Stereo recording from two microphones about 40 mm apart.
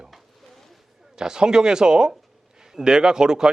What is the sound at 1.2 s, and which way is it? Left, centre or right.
A man's voice, centre.